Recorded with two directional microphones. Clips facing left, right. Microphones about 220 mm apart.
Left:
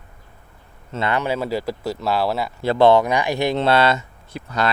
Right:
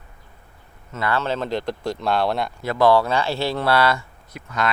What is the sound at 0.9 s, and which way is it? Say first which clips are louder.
Speech: left 2 dB; 20° left (ahead or behind).